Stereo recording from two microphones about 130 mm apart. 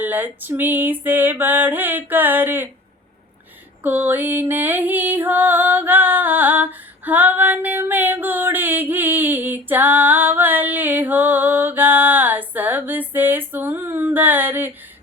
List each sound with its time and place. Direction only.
0.0 s female singing: 15° right (ahead or behind)
3.8 s music: 15° right (ahead or behind)